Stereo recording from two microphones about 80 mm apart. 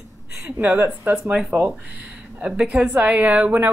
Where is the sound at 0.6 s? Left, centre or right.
Right.